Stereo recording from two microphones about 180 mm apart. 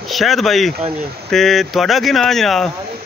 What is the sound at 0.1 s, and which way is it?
Speech, centre (ahead or behind).